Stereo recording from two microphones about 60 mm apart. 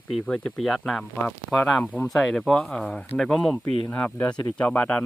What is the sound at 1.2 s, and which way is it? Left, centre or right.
Speech, centre.